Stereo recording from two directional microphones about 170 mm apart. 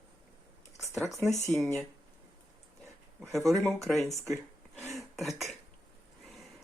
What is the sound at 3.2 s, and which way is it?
Speech, centre (ahead or behind).